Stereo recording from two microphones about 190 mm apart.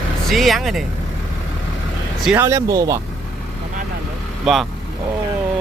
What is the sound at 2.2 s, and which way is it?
Speech, 10° right (ahead or behind).